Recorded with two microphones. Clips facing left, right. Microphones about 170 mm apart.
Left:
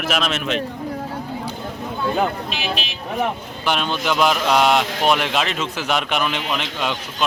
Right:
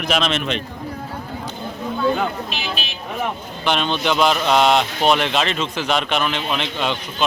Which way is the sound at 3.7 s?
5° left (ahead or behind).